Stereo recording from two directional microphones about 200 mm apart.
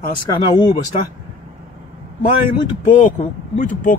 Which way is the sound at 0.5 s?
25° left (ahead or behind).